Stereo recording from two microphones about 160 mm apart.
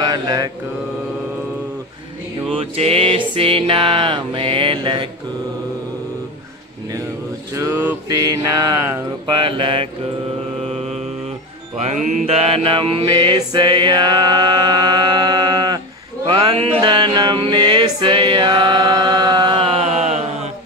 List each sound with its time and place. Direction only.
0.0 s mantra: 25° right (ahead or behind)
2.5 s music: 35° right (ahead or behind)
7.5 s a sound: 15° right (ahead or behind)
8.1 s mantra: 25° right (ahead or behind)
11.8 s mantra: 50° right (ahead or behind); by 15.8 s 25° right (ahead or behind)
16.8 s music: 25° right (ahead or behind); by 20.4 s 45° right (ahead or behind)